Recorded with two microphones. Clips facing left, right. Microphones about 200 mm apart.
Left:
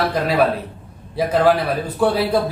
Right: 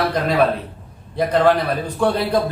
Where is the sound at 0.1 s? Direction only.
5° left (ahead or behind).